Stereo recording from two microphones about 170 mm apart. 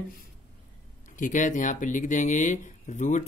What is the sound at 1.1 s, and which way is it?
Speech, 50° left (ahead or behind).